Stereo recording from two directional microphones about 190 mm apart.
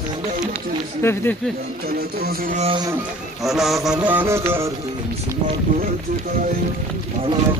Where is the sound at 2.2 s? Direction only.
50° right (ahead or behind).